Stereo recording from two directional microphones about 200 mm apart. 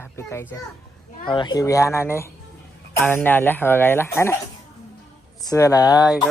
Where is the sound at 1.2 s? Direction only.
25° left (ahead or behind).